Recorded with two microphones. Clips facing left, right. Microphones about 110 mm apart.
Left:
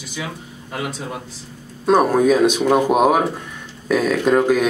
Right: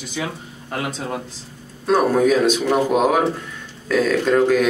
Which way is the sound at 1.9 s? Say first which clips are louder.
Left 2 dB; 15° left (ahead or behind).